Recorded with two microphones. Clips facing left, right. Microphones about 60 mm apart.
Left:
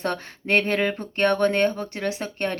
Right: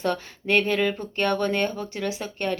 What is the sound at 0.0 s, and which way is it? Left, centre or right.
Speech, left.